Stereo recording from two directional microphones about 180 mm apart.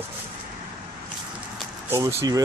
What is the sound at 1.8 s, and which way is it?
Speech, 20° right (ahead or behind).